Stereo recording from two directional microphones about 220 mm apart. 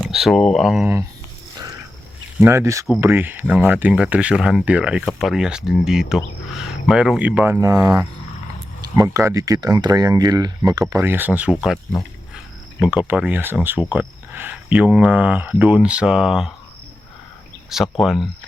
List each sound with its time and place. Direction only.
0.0 s speech: centre (ahead or behind)
2.4 s speech: 10° right (ahead or behind)
12.8 s speech: 5° right (ahead or behind)
17.7 s speech: centre (ahead or behind)